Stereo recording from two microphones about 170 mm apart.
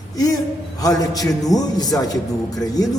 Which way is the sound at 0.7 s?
20° left (ahead or behind).